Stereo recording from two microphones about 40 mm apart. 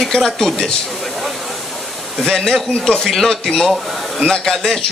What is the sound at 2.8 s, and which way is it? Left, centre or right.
A man's voice, centre.